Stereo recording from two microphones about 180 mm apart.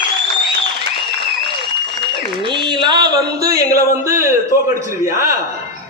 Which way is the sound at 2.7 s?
25° right (ahead or behind).